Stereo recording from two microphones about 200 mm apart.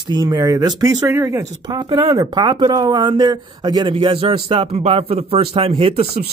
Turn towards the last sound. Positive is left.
turn(degrees=-30)  # may be behind; listen again after turning